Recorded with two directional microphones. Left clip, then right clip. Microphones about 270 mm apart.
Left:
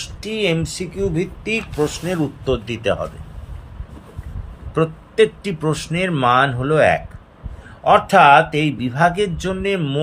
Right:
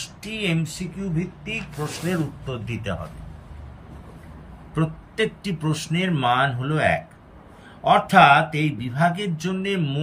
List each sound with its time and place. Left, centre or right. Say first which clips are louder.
0.2 s speech: left 7 dB; centre
4.7 s speech: left 9 dB; centre